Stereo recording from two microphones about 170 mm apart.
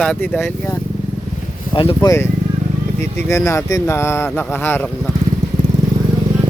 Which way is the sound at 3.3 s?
15° left (ahead or behind).